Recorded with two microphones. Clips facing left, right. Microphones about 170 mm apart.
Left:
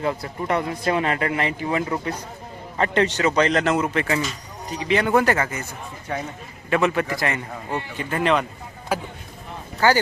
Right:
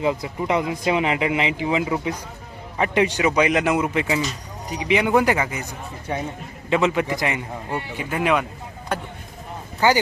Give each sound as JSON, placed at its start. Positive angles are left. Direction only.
{"t": 0.0, "sound": "a man's voice", "side_deg": -15}
{"t": 8.9, "sound": "speech", "side_deg": 5}